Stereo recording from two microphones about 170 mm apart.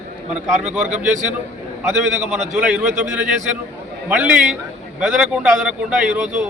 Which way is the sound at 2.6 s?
5° right (ahead or behind).